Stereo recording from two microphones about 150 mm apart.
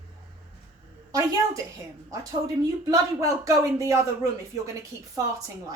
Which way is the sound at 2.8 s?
20° right (ahead or behind).